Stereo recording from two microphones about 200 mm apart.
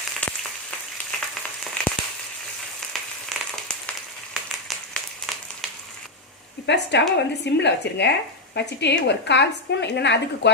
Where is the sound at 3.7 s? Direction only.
5° left (ahead or behind).